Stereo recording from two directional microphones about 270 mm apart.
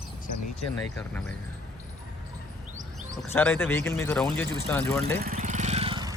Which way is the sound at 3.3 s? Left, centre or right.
Centre.